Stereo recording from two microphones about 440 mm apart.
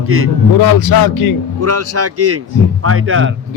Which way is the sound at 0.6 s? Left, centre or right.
Left.